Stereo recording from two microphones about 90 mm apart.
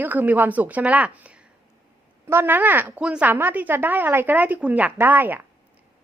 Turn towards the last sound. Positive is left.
turn(degrees=-20)  # may be behind; listen again after turning